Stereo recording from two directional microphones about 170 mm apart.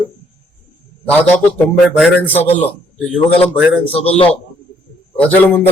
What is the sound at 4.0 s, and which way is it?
Speech, 35° left (ahead or behind).